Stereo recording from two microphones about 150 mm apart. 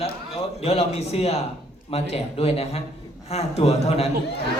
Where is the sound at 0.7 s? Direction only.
45° left (ahead or behind).